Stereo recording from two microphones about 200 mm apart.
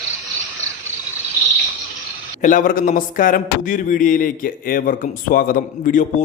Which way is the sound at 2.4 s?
40° left (ahead or behind).